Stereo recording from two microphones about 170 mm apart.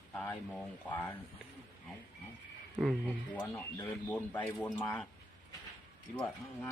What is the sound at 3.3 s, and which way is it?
Speech, 15° left (ahead or behind).